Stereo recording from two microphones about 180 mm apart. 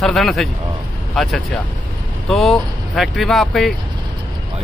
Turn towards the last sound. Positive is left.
turn(degrees=0)  # may be behind; listen again after turning